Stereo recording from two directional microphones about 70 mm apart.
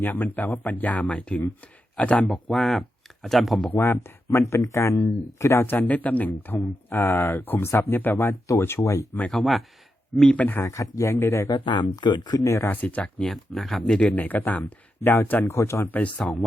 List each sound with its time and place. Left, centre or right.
0.0 s speech: left
2.3 s speech: centre
3.8 s speech: left
5.6 s speech: left
9.3 s speech: centre
10.2 s speech: left
10.7 s speech: left
11.4 s speech: left
12.4 s speech: left
12.6 s speech: left
13.3 s speech: centre
14.0 s speech: left
15.5 s speech: left
15.9 s speech: left